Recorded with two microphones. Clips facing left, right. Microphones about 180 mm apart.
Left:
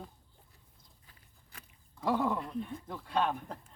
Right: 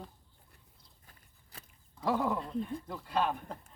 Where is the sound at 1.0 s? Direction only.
35° right (ahead or behind).